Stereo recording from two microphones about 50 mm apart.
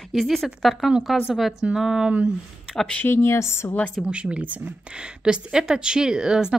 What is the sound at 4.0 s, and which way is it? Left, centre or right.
Speech, centre.